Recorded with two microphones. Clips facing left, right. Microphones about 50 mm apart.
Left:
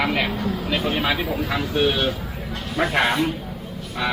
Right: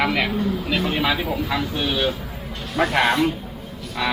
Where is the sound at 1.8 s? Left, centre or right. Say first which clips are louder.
Left 4 dB; left.